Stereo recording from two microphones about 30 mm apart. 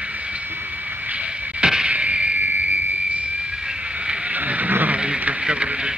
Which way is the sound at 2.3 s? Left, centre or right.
Right.